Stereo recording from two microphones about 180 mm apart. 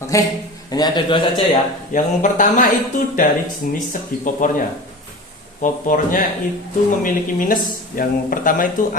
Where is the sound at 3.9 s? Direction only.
45° left (ahead or behind).